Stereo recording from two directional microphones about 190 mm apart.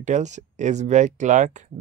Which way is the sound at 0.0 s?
40° right (ahead or behind).